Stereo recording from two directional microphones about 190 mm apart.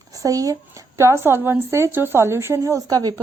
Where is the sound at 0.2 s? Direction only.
15° right (ahead or behind).